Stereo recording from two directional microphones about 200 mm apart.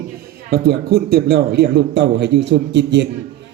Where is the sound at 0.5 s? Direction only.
50° right (ahead or behind).